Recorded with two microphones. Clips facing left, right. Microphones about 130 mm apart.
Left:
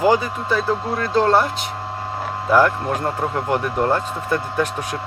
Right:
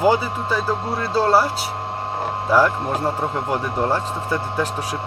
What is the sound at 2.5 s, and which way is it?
Speech, 5° right (ahead or behind).